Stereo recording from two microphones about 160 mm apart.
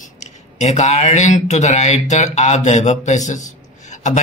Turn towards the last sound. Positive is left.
turn(degrees=50)  # may be behind; listen again after turning